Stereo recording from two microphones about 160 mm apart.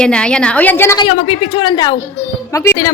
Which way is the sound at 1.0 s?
35° left (ahead or behind).